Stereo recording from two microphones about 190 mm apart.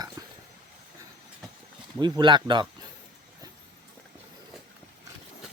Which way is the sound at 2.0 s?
25° right (ahead or behind).